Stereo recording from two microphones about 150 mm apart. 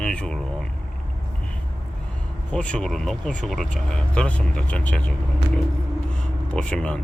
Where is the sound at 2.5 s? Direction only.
10° left (ahead or behind).